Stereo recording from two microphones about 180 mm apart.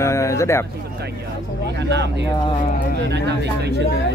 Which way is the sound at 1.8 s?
75° right (ahead or behind).